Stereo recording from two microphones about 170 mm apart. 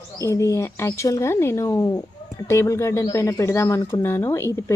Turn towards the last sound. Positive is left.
turn(degrees=15)  # may be behind; listen again after turning